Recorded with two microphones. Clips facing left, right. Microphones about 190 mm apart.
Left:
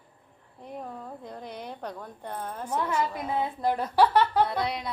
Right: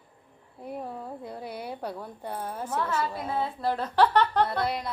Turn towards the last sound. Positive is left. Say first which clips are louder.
# right 1 dB
turn(degrees=0)  # may be behind; listen again after turning